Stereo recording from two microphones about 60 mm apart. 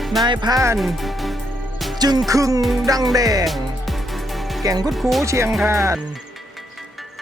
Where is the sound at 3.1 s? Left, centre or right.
Right.